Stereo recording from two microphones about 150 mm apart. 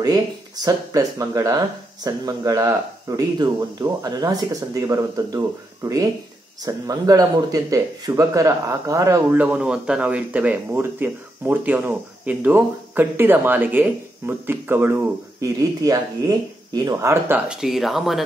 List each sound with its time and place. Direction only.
0.7 s speech: 20° right (ahead or behind)
17.5 s speech: centre (ahead or behind)